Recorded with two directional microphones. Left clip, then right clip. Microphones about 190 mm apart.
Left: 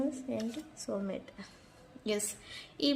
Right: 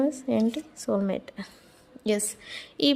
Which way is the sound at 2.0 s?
35° right (ahead or behind).